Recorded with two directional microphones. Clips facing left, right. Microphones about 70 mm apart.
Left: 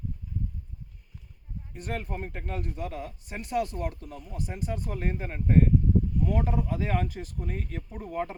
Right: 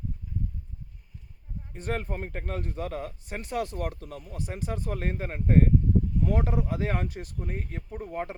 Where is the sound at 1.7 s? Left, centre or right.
Right.